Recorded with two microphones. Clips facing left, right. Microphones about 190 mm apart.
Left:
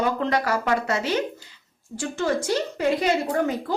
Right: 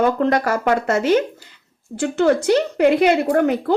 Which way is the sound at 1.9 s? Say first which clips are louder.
Right 8 dB; 65° right (ahead or behind).